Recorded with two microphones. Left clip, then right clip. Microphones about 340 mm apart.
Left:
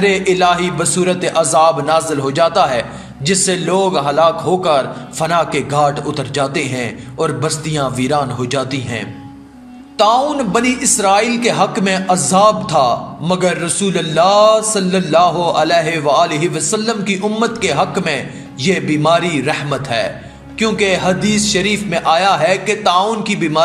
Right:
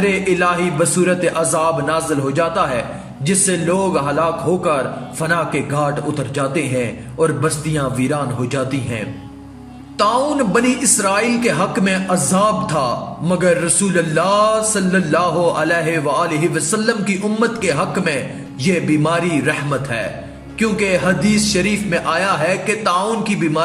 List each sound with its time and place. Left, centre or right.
0.0 s a man's voice: centre